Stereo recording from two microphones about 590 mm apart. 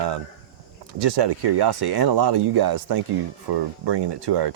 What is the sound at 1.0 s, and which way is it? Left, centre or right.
Speech, right.